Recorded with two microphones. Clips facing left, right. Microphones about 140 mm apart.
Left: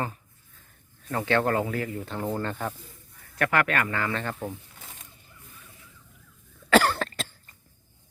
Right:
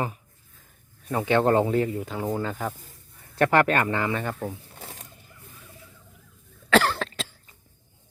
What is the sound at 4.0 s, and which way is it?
Speech, 15° right (ahead or behind).